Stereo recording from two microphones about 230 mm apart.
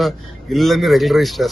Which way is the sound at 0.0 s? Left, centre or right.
Centre.